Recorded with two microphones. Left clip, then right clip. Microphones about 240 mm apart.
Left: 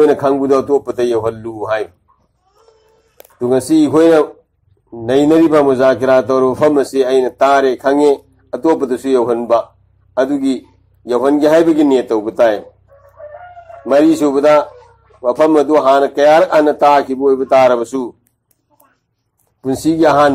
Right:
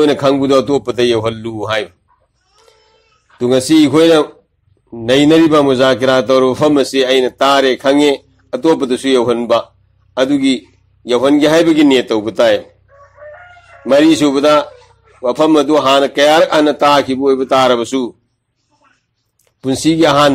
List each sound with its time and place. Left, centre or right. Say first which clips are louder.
0.0 s speech: even; right
3.3 s speech: right 2 dB; right
13.8 s speech: right 1 dB; right
19.6 s speech: right 1 dB; right